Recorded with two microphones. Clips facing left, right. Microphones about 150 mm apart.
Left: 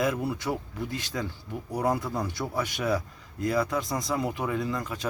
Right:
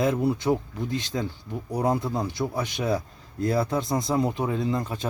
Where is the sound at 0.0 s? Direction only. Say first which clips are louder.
Right 4 dB; 25° right (ahead or behind).